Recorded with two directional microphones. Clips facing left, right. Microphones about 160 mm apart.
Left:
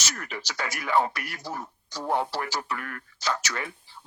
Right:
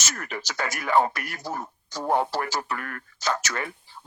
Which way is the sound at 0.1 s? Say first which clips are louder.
Right 4 dB; 50° right (ahead or behind).